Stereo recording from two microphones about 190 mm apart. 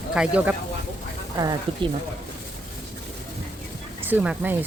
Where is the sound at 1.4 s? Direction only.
20° right (ahead or behind).